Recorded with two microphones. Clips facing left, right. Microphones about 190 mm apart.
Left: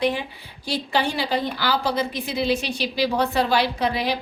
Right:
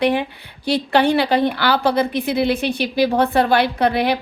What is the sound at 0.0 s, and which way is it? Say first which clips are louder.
A woman's voice: right 5 dB; 60° right (ahead or behind).